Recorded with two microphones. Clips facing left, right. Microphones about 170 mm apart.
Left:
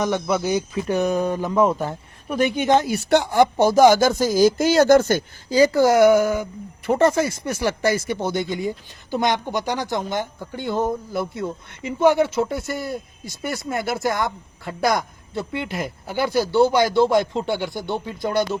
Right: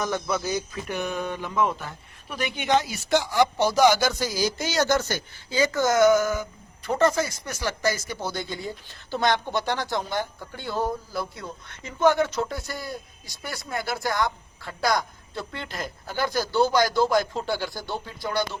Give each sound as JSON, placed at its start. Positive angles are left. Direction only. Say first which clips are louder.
{"t": 0.0, "sound": "a woman's voice", "louder": "left 5 dB", "side_deg": 20}
{"t": 0.9, "sound": "speech", "louder": "left 10 dB", "side_deg": 40}
{"t": 5.5, "sound": "a woman's voice", "louder": "left 6 dB", "side_deg": 35}
{"t": 12.0, "sound": "speech", "louder": "left 4 dB", "side_deg": 10}
{"t": 12.5, "sound": "a woman's voice", "louder": "left 7 dB", "side_deg": 25}
{"t": 15.5, "sound": "speech", "louder": "left 8 dB", "side_deg": 10}
{"t": 16.3, "sound": "a woman's voice", "louder": "left 5 dB", "side_deg": 25}